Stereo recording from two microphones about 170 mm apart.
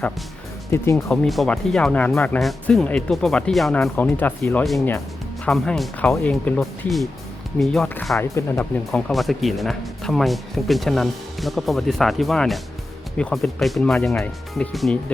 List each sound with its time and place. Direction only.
0.7 s speech: 15° left (ahead or behind)
1.1 s speech: centre (ahead or behind)
8.2 s speech: 15° left (ahead or behind)
8.9 s speech: 5° left (ahead or behind)